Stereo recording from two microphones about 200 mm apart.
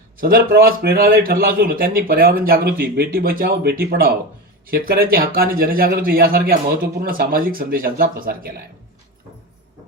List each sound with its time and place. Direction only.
0.2 s a man's voice: 45° right (ahead or behind)